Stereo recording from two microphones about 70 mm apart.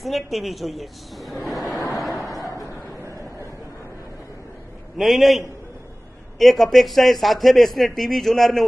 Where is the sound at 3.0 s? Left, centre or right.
Right.